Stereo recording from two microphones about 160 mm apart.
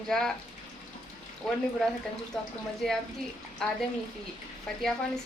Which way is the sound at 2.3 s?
5° left (ahead or behind).